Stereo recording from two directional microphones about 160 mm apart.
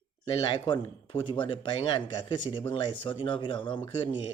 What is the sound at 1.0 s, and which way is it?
Speech, 35° left (ahead or behind).